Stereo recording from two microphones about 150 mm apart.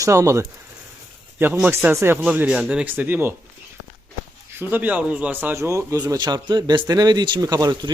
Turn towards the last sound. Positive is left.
turn(degrees=-25)  # may be behind; listen again after turning